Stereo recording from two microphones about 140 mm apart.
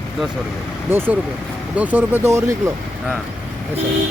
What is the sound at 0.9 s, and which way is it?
Speech, 15° right (ahead or behind).